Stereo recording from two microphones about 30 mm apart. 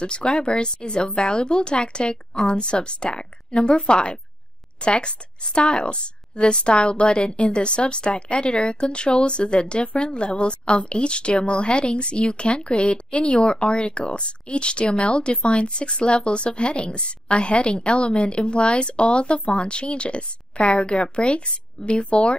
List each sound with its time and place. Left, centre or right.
0.0 s speech: left